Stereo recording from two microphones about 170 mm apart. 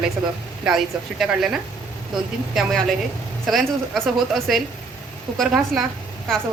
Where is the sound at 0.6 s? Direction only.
5° right (ahead or behind).